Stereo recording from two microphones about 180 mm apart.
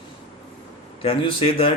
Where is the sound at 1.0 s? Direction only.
30° left (ahead or behind).